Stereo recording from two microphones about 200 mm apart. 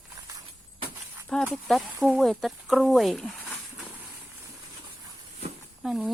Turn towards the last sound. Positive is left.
turn(degrees=-5)  # may be behind; listen again after turning